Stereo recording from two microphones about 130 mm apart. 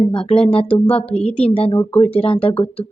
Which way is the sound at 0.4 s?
45° left (ahead or behind).